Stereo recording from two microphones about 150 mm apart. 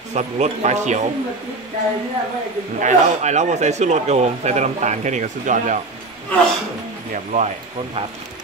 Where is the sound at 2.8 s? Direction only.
50° right (ahead or behind).